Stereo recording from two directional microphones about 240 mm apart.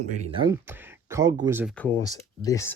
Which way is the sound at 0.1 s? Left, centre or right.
Right.